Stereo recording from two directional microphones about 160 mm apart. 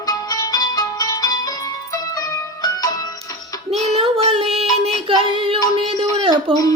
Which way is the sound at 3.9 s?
40° right (ahead or behind).